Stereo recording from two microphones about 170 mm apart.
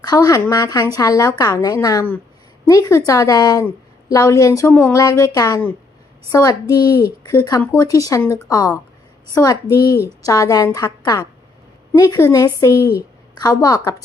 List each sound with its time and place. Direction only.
0.0 s a woman's voice: 20° left (ahead or behind)